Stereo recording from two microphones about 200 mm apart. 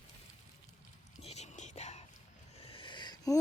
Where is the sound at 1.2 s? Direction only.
35° left (ahead or behind).